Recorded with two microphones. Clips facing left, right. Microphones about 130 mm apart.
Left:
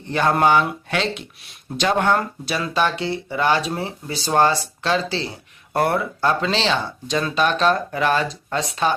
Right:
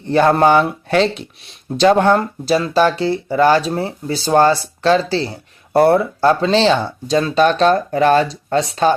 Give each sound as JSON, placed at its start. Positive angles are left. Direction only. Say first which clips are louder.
{"t": 0.1, "sound": "speech", "louder": "right 5 dB", "side_deg": -35}